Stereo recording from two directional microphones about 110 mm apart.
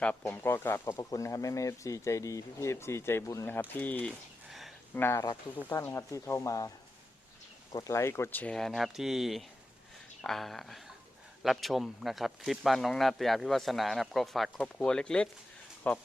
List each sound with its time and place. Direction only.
0.0 s speech: 15° left (ahead or behind)
4.4 s a sound: centre (ahead or behind)
4.9 s speech: 20° left (ahead or behind)
7.7 s speech: 30° left (ahead or behind); by 8.5 s 15° left (ahead or behind)
8.5 s speech: centre (ahead or behind)